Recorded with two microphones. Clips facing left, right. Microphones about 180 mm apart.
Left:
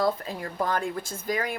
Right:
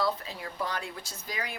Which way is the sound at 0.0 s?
50° left (ahead or behind).